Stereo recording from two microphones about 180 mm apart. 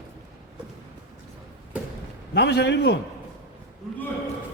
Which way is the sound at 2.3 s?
70° left (ahead or behind).